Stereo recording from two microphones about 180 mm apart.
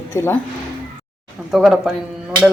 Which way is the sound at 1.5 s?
Centre (ahead or behind).